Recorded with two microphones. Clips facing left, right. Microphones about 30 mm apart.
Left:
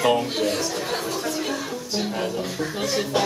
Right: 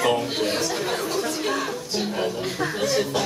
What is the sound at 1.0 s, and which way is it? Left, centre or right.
Chatter, centre.